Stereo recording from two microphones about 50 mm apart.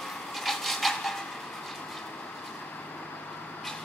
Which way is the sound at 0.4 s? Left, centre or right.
Centre.